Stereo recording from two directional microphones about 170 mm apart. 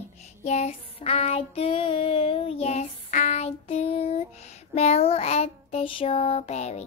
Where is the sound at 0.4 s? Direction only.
40° left (ahead or behind).